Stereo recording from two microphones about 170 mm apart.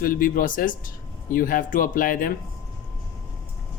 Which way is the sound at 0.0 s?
55° left (ahead or behind).